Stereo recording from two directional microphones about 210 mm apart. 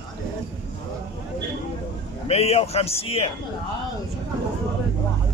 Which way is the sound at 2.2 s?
30° left (ahead or behind).